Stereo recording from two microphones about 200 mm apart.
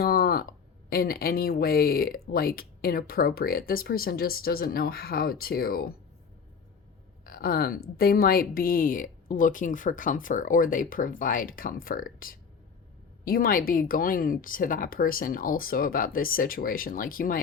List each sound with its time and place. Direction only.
0.0 s a sound: 50° left (ahead or behind)
0.9 s speech: 50° left (ahead or behind)
7.3 s speech: 50° left (ahead or behind)